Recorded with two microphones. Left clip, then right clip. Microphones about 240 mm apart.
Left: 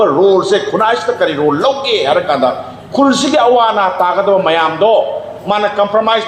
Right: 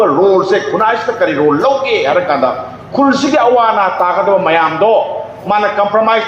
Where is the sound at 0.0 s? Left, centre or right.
Left.